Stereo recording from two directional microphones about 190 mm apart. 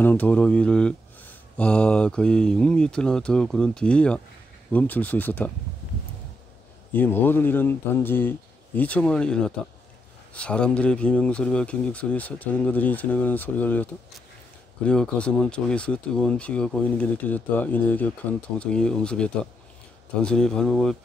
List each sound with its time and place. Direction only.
0.0 s speech: 10° left (ahead or behind)
6.9 s speech: 10° left (ahead or behind)
14.9 s speech: 5° left (ahead or behind)